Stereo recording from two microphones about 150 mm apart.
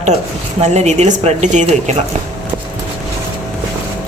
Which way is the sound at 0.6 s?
50° right (ahead or behind).